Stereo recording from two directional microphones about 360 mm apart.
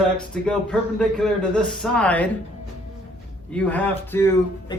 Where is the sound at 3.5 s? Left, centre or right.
Centre.